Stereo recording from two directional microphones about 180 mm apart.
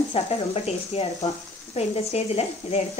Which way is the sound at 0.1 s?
35° left (ahead or behind).